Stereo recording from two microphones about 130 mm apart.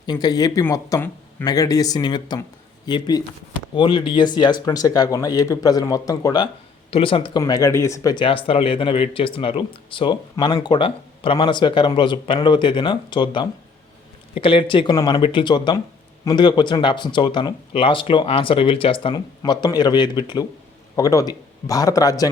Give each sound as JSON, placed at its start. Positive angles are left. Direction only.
{"t": 0.0, "sound": "speech", "side_deg": 30}
{"t": 6.9, "sound": "speech", "side_deg": 45}
{"t": 7.3, "sound": "speech", "side_deg": 30}
{"t": 8.1, "sound": "speech", "side_deg": 45}